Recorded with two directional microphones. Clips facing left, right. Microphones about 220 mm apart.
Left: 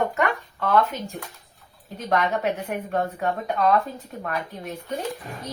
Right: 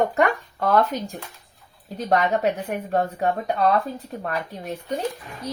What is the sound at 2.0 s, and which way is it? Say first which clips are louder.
A woman's voice: right 2 dB; 35° right (ahead or behind).